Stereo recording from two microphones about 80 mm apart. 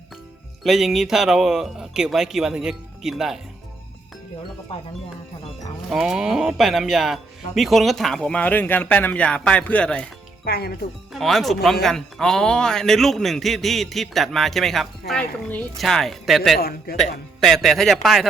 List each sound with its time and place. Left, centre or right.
0.6 s speech: centre
5.9 s speech: centre
8.3 s speech: centre
11.1 s speech: centre
15.2 s speech: centre
15.8 s speech: centre